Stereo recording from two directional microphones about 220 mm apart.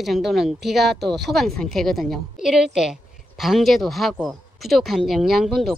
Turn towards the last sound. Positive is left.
turn(degrees=0)  # may be behind; listen again after turning